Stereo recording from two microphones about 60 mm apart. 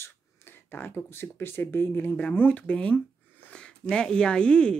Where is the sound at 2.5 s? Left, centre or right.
Centre.